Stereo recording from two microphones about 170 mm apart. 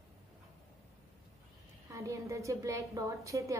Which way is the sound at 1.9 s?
15° right (ahead or behind).